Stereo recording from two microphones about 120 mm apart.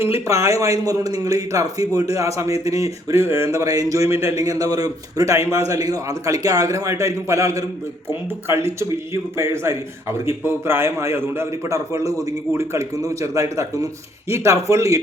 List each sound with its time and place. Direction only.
0.0 s a man's voice: 25° right (ahead or behind)